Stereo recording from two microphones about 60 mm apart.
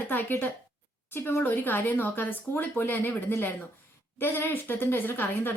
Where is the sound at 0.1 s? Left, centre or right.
Left.